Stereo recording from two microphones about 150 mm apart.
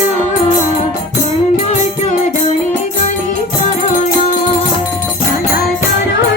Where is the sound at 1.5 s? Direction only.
50° left (ahead or behind).